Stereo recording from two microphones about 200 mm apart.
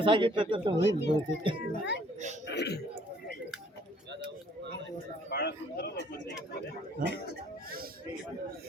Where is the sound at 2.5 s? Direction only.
55° left (ahead or behind).